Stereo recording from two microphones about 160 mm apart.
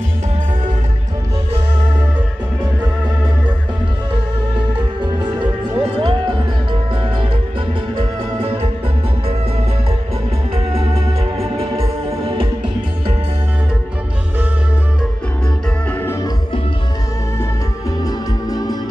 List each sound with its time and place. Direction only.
4.7 s music: 30° right (ahead or behind)
11.3 s music: 40° right (ahead or behind)
15.9 s music: 15° left (ahead or behind)
18.0 s music: 25° left (ahead or behind)